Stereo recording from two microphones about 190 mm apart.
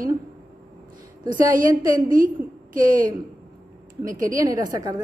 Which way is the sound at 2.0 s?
45° right (ahead or behind).